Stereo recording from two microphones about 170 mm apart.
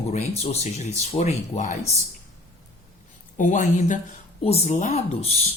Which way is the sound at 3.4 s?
45° left (ahead or behind).